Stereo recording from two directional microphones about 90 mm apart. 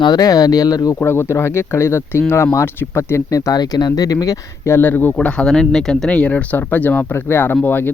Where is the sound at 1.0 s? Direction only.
25° left (ahead or behind).